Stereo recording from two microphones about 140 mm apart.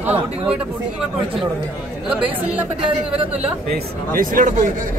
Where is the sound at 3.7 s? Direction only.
85° right.